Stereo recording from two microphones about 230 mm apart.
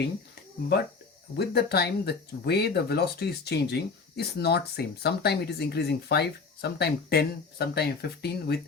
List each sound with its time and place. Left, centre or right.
1.4 s speech: left